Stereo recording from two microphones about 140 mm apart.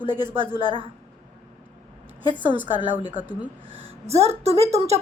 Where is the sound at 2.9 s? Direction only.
65° left (ahead or behind).